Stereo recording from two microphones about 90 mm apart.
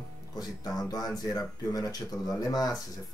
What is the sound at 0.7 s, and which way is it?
Speech, 45° left (ahead or behind).